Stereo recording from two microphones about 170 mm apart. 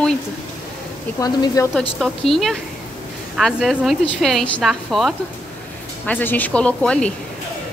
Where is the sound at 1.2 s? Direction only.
20° left (ahead or behind).